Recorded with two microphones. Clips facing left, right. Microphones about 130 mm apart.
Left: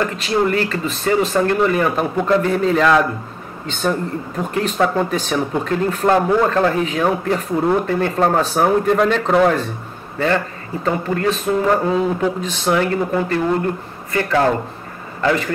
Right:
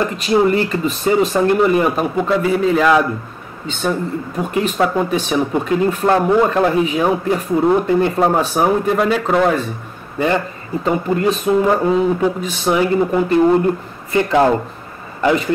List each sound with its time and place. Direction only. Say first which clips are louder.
0.0 s speech: right 3 dB; 15° right (ahead or behind)
2.1 s speech: even; 5° right (ahead or behind)
4.4 s speech: right 1 dB; 5° right (ahead or behind)
6.3 s speech: right 2 dB; 15° right (ahead or behind)
10.1 s speech: right 1 dB; 15° right (ahead or behind)
11.7 s a man's voice: right 2 dB; 5° right (ahead or behind)